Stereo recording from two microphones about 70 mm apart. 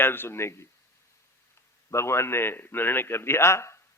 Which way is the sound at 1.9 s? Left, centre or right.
Left.